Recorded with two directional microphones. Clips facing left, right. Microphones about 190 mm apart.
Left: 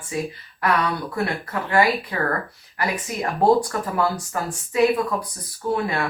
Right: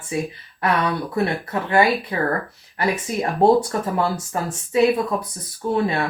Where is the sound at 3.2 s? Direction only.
25° right (ahead or behind).